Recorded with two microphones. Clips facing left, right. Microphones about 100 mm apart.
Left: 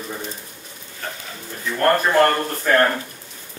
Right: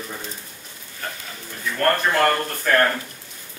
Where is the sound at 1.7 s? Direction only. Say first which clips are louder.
Left 4 dB; 15° left (ahead or behind).